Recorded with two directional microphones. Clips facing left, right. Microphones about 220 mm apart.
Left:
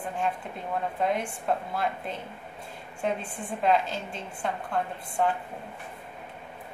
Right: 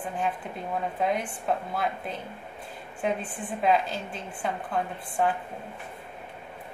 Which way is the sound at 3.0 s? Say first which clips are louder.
Right 1 dB; 5° right (ahead or behind).